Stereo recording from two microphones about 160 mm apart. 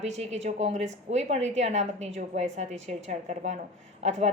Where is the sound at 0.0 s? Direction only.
45° right (ahead or behind).